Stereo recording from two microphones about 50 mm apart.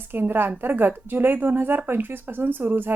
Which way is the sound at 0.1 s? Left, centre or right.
Right.